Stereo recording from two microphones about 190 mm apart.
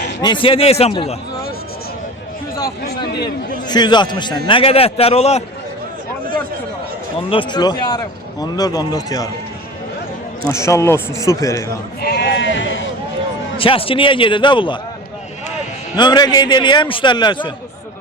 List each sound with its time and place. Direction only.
0.2 s a man's voice: 25° left (ahead or behind)
3.7 s a man's voice: 25° left (ahead or behind)
7.3 s a man's voice: 25° left (ahead or behind)
10.5 s speech: 15° left (ahead or behind)
12.0 s sheep: 60° left (ahead or behind); by 12.9 s 80° left
13.6 s a man's voice: 30° left (ahead or behind)
16.0 s a man's voice: 25° left (ahead or behind)